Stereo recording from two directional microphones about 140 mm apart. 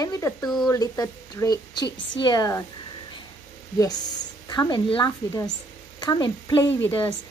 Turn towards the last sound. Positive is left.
turn(degrees=15)  # may be behind; listen again after turning